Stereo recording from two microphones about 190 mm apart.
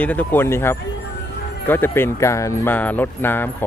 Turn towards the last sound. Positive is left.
turn(degrees=10)  # may be behind; listen again after turning